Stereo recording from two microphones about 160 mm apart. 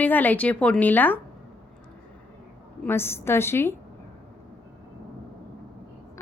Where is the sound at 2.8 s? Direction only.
15° left (ahead or behind).